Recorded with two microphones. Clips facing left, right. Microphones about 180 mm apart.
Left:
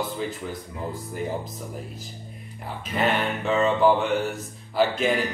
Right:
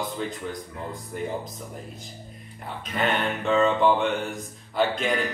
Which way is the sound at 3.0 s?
5° left (ahead or behind).